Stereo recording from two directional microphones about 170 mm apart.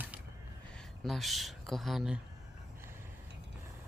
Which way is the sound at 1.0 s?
Centre (ahead or behind).